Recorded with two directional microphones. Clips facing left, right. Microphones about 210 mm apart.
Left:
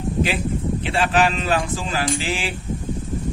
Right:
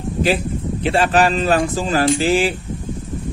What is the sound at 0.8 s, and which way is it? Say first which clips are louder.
Speech: right 5 dB; 40° right (ahead or behind).